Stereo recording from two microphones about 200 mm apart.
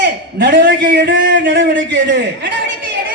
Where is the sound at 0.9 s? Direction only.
60° right (ahead or behind).